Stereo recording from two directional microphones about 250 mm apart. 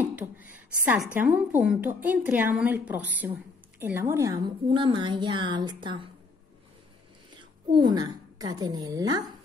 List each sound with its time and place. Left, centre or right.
0.1 s a sound: centre
1.1 s a woman's voice: centre
7.7 s a woman's voice: centre